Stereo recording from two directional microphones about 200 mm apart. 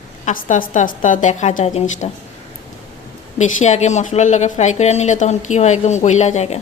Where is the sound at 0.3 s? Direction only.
40° left (ahead or behind).